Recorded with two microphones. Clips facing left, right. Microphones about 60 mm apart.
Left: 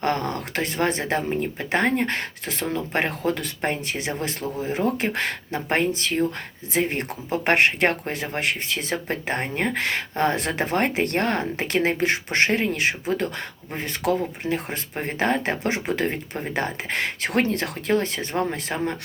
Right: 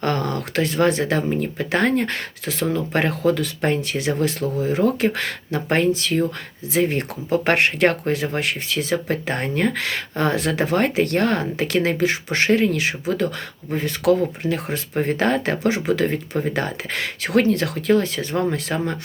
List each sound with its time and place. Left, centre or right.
0.0 s speech: left
5.9 s speech: left